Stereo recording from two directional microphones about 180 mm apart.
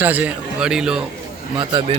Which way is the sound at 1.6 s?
25° right (ahead or behind).